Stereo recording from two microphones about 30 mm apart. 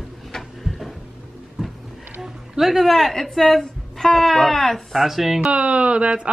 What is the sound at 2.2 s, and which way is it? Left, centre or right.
Speech, centre.